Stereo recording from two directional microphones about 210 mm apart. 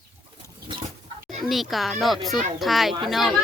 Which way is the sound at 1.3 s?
Centre (ahead or behind).